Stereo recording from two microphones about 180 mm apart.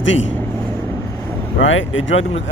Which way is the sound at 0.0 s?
90° left.